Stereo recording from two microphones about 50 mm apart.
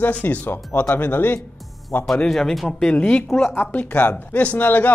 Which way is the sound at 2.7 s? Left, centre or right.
Centre.